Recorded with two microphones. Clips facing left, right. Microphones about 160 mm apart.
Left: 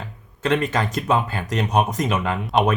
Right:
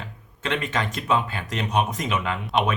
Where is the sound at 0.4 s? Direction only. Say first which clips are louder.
Left 5 dB; 40° left (ahead or behind).